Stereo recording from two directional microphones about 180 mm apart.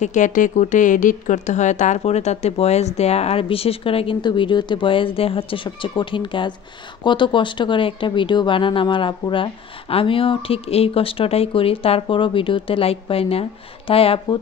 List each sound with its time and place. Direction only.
0.0 s speech: 45° left (ahead or behind)